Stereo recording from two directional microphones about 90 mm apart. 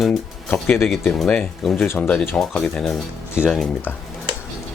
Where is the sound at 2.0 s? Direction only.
10° left (ahead or behind).